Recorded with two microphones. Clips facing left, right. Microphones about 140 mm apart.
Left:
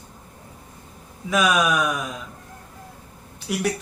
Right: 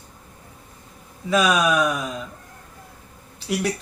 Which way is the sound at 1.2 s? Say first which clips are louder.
Right 1 dB; centre (ahead or behind).